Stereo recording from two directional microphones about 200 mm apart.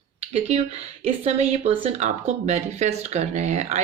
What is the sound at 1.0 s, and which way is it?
Speech, 30° right (ahead or behind).